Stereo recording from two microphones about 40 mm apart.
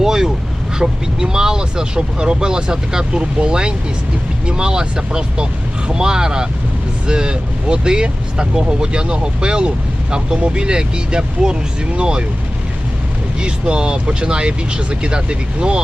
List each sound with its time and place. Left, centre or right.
0.0 s vehicle: centre
0.8 s speech: centre
13.4 s speech: right